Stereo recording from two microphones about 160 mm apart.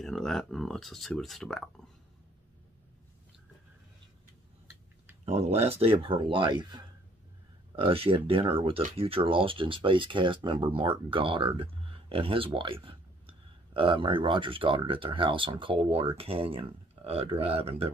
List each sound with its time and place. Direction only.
0.0 s speech: centre (ahead or behind)
5.2 s speech: 40° right (ahead or behind)